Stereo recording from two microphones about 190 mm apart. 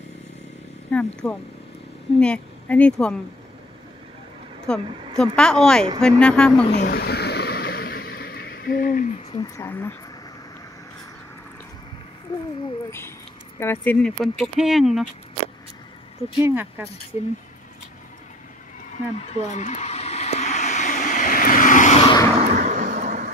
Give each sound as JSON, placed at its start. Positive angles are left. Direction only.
{"t": 0.9, "sound": "speech", "side_deg": 5}
{"t": 4.6, "sound": "speech", "side_deg": 5}
{"t": 6.7, "sound": "a sound", "side_deg": 60}
{"t": 9.3, "sound": "speech", "side_deg": 20}
{"t": 13.6, "sound": "speech", "side_deg": 10}
{"t": 16.3, "sound": "speech", "side_deg": -10}
{"t": 19.1, "sound": "a sound", "side_deg": 35}
{"t": 22.0, "sound": "vehicle", "side_deg": 20}
{"t": 22.5, "sound": "vehicle", "side_deg": -40}